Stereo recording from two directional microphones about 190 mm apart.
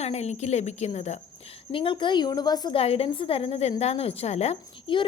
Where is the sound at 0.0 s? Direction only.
35° left (ahead or behind).